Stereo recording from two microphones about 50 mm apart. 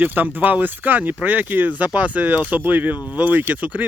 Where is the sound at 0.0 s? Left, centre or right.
Right.